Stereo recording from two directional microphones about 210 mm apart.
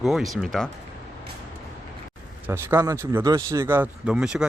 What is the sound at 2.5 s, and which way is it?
Speech, 15° right (ahead or behind).